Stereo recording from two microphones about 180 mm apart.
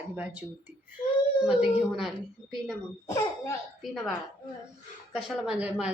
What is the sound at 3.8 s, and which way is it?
Speech, centre (ahead or behind).